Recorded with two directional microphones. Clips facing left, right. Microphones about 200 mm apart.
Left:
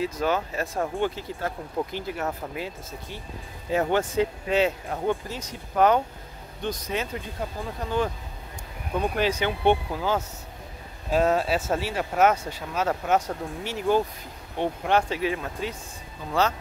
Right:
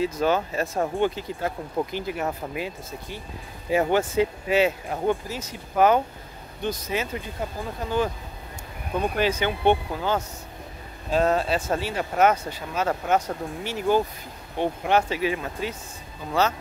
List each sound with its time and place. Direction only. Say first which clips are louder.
0.0 s speech: right 3 dB; 25° right (ahead or behind)
0.9 s speech: right 3 dB; 15° right (ahead or behind)
9.0 s speech: right 1 dB; centre (ahead or behind)